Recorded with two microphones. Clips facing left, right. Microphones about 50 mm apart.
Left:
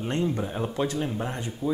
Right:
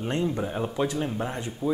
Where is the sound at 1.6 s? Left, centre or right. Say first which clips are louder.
Right 1 dB; right.